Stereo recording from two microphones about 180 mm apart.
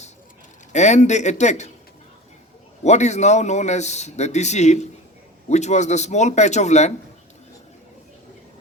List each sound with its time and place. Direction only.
0.7 s a man's voice: 40° left (ahead or behind)
2.8 s a man's voice: 40° left (ahead or behind)